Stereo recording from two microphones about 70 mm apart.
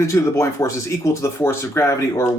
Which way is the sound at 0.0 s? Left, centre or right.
Left.